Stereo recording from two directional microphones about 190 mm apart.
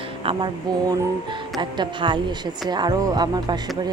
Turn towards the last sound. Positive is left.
turn(degrees=-20)  # may be behind; listen again after turning